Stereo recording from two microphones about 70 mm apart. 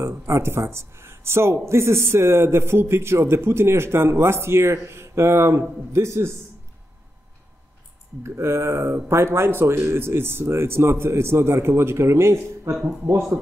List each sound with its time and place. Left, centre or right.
0.0 s speech: right
8.2 s speech: right